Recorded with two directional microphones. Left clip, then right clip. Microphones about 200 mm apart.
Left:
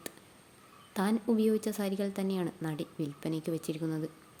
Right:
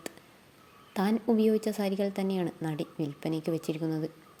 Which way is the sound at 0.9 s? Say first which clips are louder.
Right 3 dB; centre (ahead or behind).